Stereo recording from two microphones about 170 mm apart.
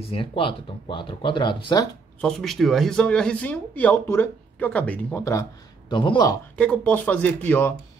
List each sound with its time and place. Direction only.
0.0 s speech: 30° left (ahead or behind)
2.2 s speech: centre (ahead or behind)
5.2 s speech: 20° left (ahead or behind)
6.5 s speech: 5° left (ahead or behind)